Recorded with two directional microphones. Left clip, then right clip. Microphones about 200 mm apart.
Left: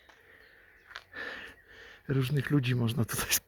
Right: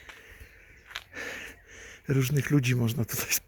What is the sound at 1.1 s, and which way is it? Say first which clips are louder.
Gasp: even; 5° right (ahead or behind).